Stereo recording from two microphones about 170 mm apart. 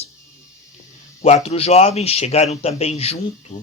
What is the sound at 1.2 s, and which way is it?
Speech, 40° left (ahead or behind).